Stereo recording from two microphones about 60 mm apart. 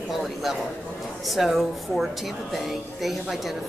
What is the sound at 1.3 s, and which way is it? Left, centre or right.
A woman's voice, centre.